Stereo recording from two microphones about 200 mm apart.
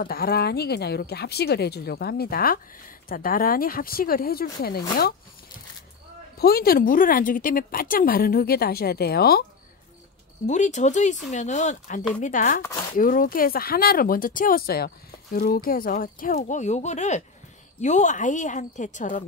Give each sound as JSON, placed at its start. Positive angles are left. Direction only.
{"t": 0.0, "sound": "speech", "side_deg": 50}
{"t": 6.3, "sound": "speech", "side_deg": 50}
{"t": 10.4, "sound": "a woman's voice", "side_deg": 35}